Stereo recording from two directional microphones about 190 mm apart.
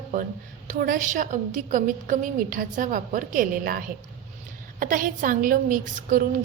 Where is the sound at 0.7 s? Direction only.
45° right (ahead or behind).